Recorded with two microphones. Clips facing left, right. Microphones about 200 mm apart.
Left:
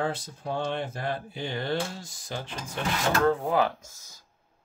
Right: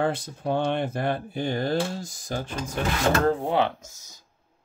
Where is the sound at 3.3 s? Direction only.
30° right (ahead or behind).